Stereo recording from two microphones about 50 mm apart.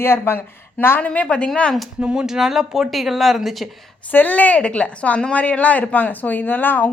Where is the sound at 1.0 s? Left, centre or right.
Left.